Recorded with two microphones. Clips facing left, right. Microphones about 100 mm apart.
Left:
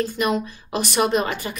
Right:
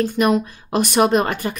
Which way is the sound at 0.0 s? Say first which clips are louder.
Right 5 dB; 50° right (ahead or behind).